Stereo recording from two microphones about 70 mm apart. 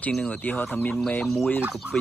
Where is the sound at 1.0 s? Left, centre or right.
Centre.